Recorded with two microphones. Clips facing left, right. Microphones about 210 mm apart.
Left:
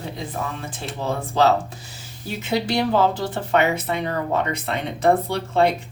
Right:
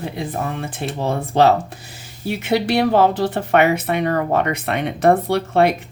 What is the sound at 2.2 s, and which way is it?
Speech, 60° right (ahead or behind).